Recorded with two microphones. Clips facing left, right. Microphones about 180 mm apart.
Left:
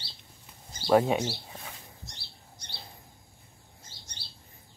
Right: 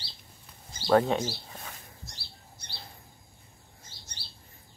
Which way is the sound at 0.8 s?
10° left (ahead or behind).